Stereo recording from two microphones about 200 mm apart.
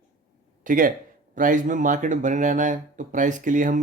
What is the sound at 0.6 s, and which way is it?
Speech, 45° right (ahead or behind).